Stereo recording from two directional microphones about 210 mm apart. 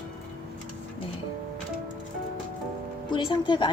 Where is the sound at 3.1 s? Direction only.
20° left (ahead or behind).